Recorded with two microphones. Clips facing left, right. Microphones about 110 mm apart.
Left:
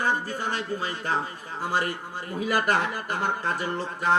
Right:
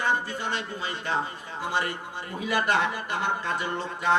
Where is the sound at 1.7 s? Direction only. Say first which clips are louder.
Left 2 dB; 40° left (ahead or behind).